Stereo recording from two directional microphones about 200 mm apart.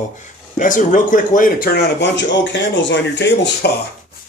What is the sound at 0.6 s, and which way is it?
Speech, 40° left (ahead or behind).